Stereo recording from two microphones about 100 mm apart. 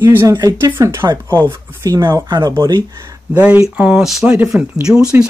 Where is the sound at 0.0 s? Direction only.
25° right (ahead or behind).